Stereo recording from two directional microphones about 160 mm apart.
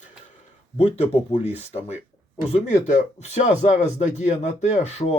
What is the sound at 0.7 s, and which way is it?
A man's voice, 40° left (ahead or behind).